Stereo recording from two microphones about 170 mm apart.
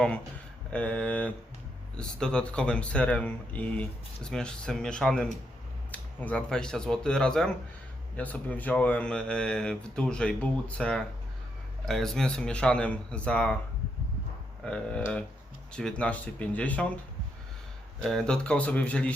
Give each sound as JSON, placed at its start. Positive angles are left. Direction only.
{"t": 0.7, "sound": "speech", "side_deg": 5}
{"t": 14.6, "sound": "speech", "side_deg": 5}
{"t": 18.0, "sound": "speech", "side_deg": 5}